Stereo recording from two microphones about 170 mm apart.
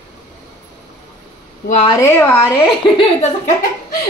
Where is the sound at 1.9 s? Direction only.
15° left (ahead or behind).